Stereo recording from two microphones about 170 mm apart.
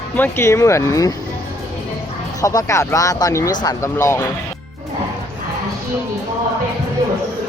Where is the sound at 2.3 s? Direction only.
20° left (ahead or behind).